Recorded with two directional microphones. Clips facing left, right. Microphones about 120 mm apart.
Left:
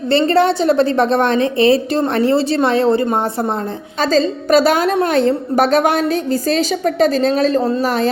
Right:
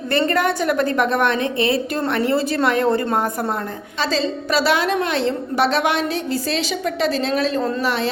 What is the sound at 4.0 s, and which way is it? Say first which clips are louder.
A woman's voice: left 6 dB; 45° left (ahead or behind).